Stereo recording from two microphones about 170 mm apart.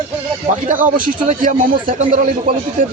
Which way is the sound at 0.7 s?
50° right (ahead or behind).